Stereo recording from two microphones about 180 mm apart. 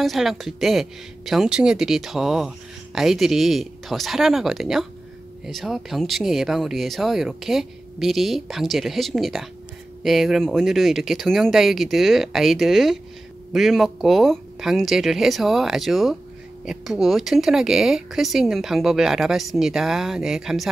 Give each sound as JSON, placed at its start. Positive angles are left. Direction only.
{"t": 0.0, "sound": "speech", "side_deg": 0}